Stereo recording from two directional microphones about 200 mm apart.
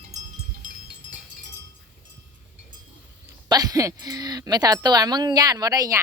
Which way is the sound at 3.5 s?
20° right (ahead or behind).